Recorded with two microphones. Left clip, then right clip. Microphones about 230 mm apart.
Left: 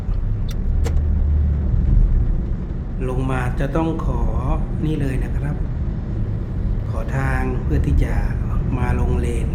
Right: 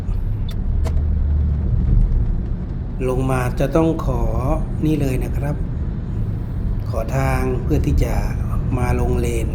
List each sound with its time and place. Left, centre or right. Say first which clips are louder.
3.0 s speech: right 4 dB; centre
6.9 s speech: right 4 dB; centre